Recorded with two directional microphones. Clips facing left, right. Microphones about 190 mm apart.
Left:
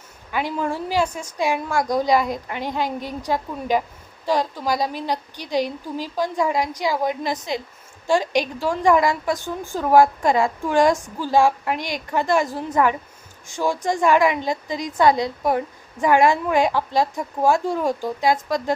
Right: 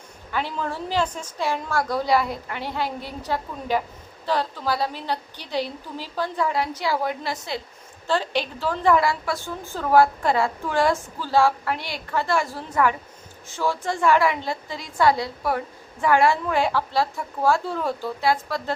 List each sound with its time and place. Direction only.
0.3 s a woman's voice: 15° left (ahead or behind)